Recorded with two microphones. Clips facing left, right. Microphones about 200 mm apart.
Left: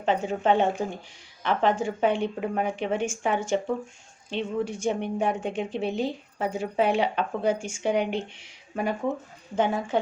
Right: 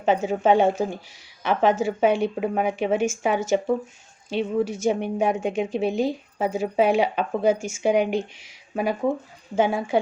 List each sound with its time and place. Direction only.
0.0 s a woman's voice: 10° right (ahead or behind)